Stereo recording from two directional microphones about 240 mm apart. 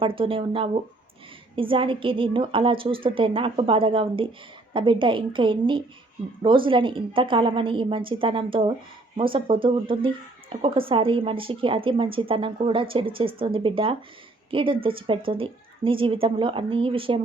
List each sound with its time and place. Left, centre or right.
0.2 s a woman's voice: right